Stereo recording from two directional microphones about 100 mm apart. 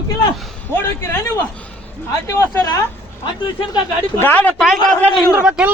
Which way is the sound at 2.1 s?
30° left (ahead or behind).